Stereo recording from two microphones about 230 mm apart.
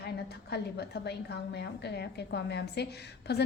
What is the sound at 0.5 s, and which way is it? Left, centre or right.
A woman's voice, left.